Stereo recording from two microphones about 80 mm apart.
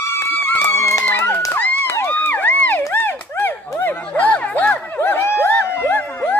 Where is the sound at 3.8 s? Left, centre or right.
Left.